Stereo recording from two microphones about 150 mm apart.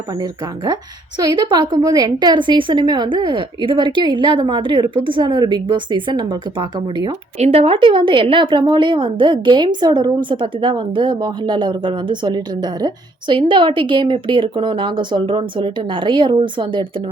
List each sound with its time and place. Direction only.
0.2 s a woman's voice: 30° right (ahead or behind)
7.3 s a woman's voice: 45° right (ahead or behind)